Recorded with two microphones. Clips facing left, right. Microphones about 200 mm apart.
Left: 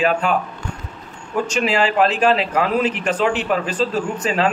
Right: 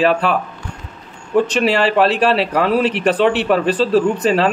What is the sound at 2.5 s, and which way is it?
A man's voice, 35° right (ahead or behind).